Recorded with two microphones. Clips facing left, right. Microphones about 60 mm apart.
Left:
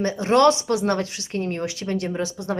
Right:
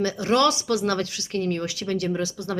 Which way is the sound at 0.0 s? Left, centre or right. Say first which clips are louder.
Left 4 dB; left.